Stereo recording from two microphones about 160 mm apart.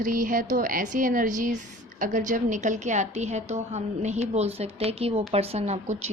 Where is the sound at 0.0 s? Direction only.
55° right (ahead or behind).